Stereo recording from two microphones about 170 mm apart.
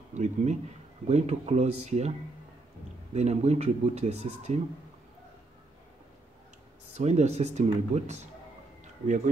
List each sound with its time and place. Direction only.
0.2 s speech: 45° right (ahead or behind)
7.0 s speech: 40° right (ahead or behind)